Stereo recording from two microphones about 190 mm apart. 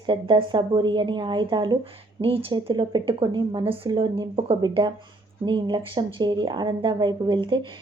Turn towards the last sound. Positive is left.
turn(degrees=-25)  # may be behind; listen again after turning